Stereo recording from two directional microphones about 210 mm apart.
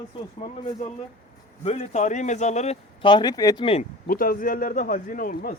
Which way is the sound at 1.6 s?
30° left (ahead or behind).